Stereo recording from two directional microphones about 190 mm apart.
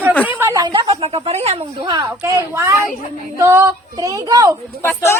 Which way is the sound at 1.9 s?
15° right (ahead or behind).